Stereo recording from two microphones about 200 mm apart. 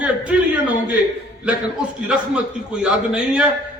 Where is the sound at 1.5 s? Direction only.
5° right (ahead or behind).